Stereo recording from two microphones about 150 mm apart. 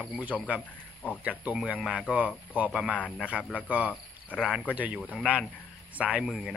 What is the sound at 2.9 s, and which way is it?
Speech, 10° left (ahead or behind).